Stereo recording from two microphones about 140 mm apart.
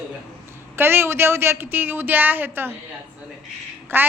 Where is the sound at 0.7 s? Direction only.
15° right (ahead or behind).